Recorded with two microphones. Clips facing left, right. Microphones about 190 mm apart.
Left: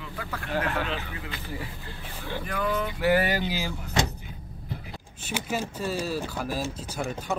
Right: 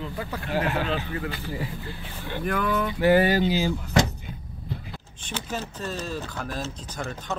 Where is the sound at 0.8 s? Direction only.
40° right (ahead or behind).